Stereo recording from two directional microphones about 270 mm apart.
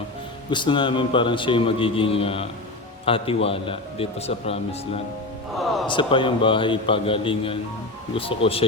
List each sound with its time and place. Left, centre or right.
0.5 s a man's voice: centre
5.5 s speech: centre
5.9 s a man's voice: centre